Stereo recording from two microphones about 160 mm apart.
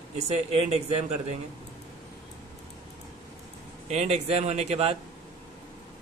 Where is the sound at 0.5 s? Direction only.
40° right (ahead or behind).